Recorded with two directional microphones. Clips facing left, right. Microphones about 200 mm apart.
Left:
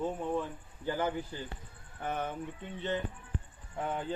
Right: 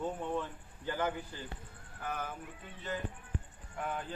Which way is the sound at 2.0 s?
25° left (ahead or behind).